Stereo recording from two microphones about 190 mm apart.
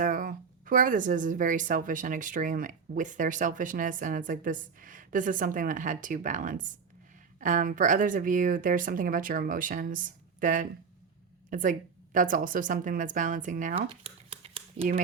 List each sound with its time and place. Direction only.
0.0 s a woman's voice: 45° right (ahead or behind)